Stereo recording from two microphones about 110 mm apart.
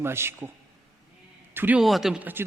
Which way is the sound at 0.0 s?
20° right (ahead or behind).